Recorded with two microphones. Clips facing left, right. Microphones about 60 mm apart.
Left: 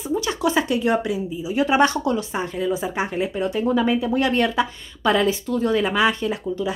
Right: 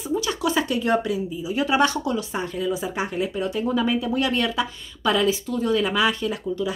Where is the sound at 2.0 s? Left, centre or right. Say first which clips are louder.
Left 3 dB; left.